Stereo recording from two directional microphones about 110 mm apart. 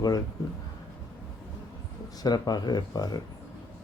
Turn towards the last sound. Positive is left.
turn(degrees=35)  # may be behind; listen again after turning